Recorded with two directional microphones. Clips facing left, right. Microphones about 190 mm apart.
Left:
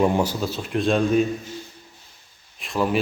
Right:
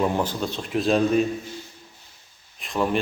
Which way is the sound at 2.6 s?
Centre (ahead or behind).